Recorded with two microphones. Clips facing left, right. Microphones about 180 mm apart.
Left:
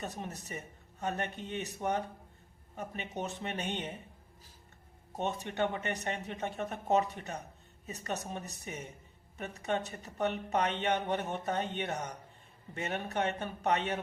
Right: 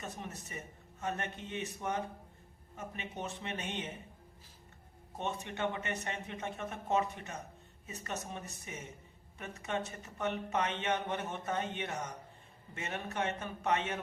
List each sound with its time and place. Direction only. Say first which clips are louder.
0.0 s a man's voice: left 3 dB; 35° left (ahead or behind)
5.1 s speech: left 4 dB; 40° left (ahead or behind)
13.1 s speech: left 1 dB; 35° left (ahead or behind)